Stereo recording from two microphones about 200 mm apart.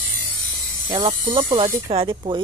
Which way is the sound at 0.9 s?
35° right (ahead or behind).